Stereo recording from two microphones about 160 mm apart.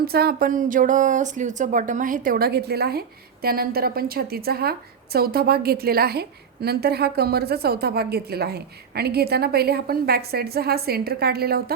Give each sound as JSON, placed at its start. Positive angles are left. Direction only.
{"t": 0.0, "sound": "a woman's voice", "side_deg": -75}